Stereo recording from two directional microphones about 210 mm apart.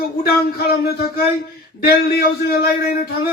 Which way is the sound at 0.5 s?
50° left (ahead or behind).